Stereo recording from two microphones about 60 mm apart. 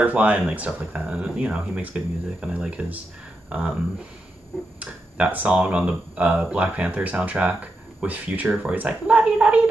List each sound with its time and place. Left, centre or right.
0.0 s speech: right
3.4 s a sound: centre
4.7 s speech: right